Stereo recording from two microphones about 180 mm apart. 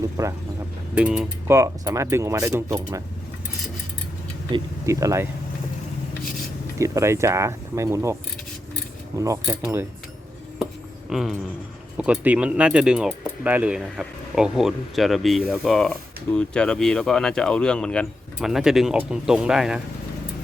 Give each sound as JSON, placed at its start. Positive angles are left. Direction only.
{"t": 0.2, "sound": "speech", "side_deg": -20}
{"t": 0.9, "sound": "speech", "side_deg": -5}
{"t": 1.5, "sound": "speech", "side_deg": -15}
{"t": 4.5, "sound": "speech", "side_deg": -15}
{"t": 6.7, "sound": "speech", "side_deg": -15}
{"t": 9.1, "sound": "speech", "side_deg": -15}
{"t": 11.1, "sound": "speech", "side_deg": 0}